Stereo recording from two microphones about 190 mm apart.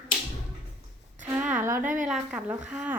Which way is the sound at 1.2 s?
10° right (ahead or behind).